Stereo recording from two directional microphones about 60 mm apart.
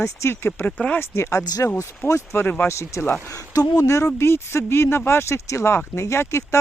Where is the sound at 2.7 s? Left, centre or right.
Left.